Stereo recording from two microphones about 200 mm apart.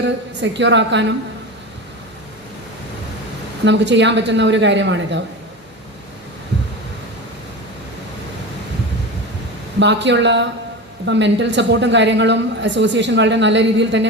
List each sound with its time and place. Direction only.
0.0 s a woman's voice: 60° right (ahead or behind)
3.6 s a woman's voice: 65° right (ahead or behind)
9.8 s a woman's voice: 60° right (ahead or behind)